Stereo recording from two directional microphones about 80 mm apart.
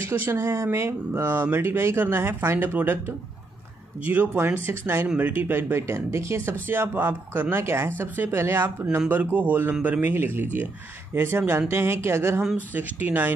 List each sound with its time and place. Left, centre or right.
0.0 s speech: right
4.0 s speech: right
5.0 s speech: centre; by 12.4 s right
12.7 s speech: right